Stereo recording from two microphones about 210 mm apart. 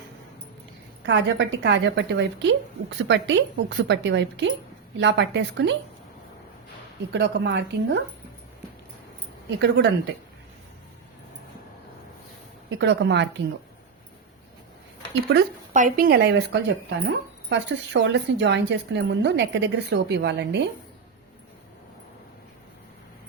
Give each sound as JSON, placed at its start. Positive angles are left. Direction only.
{"t": 1.0, "sound": "speech", "side_deg": -55}
{"t": 7.1, "sound": "speech", "side_deg": -55}
{"t": 9.6, "sound": "speech", "side_deg": -55}
{"t": 12.8, "sound": "speech", "side_deg": -55}
{"t": 15.1, "sound": "speech", "side_deg": -50}
{"t": 15.7, "sound": "speech", "side_deg": -40}